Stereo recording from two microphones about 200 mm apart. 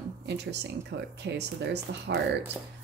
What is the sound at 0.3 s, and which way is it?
Speech, 55° right (ahead or behind).